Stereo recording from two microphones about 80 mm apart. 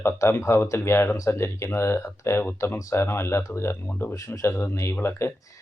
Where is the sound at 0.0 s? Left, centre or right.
Left.